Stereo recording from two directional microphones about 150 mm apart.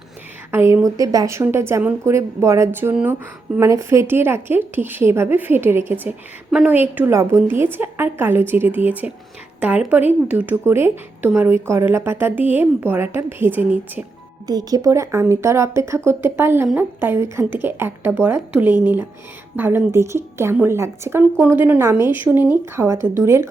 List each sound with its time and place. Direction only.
0.5 s a woman's voice: 20° right (ahead or behind)
14.4 s a woman's voice: 25° right (ahead or behind)